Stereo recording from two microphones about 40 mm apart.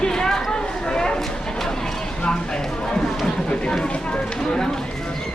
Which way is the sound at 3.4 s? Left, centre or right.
Centre.